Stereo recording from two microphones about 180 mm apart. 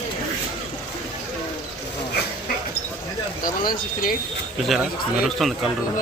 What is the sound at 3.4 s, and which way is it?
Speech, 50° left (ahead or behind).